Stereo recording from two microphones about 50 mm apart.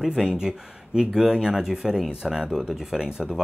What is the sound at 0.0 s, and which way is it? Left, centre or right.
Speech, centre.